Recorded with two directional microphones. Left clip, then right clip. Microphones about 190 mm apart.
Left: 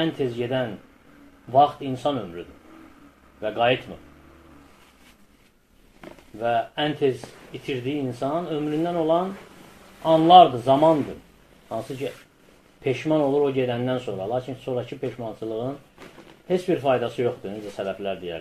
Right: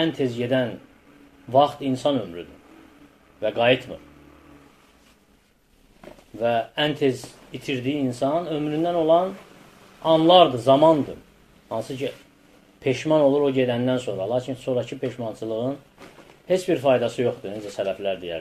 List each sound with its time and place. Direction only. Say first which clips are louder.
0.0 s a man's voice: right 1 dB; 20° right (ahead or behind)
6.4 s speech: right 1 dB; 20° right (ahead or behind)
12.0 s speech: right 2 dB; 25° right (ahead or behind)